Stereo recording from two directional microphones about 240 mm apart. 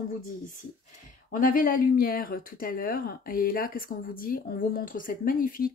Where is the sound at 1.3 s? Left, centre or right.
Left.